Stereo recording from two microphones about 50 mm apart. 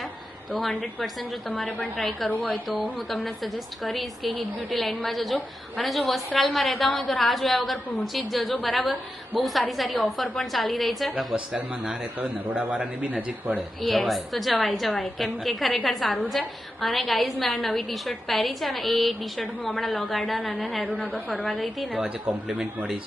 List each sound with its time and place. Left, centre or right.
2.0 s a woman's voice: centre
11.3 s speech: right
13.8 s a woman's voice: centre
21.2 s a woman's voice: left
21.5 s a woman's voice: centre
22.3 s a man's voice: right